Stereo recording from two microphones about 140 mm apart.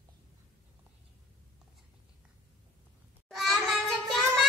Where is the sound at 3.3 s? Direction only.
Centre (ahead or behind).